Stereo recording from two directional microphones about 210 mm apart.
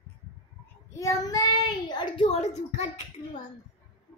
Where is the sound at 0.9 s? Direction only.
15° left (ahead or behind).